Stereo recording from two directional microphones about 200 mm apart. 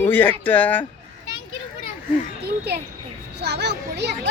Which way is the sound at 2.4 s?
55° right (ahead or behind).